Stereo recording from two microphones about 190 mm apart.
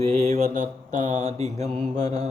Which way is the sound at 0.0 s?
35° right (ahead or behind).